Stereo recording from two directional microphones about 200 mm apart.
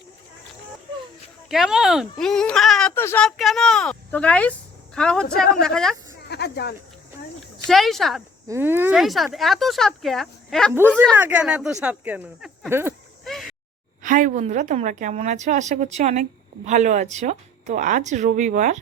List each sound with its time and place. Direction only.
1.5 s speech: centre (ahead or behind)
6.2 s speech: 55° left (ahead or behind)
7.7 s speech: centre (ahead or behind)
8.4 s speech: 10° right (ahead or behind)
13.2 s a sound: centre (ahead or behind)
14.0 s a woman's voice: 40° right (ahead or behind)